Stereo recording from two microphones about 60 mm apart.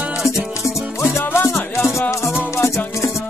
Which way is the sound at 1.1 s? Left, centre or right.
Left.